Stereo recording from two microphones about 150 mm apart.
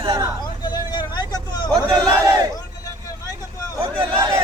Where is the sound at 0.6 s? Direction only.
30° left (ahead or behind).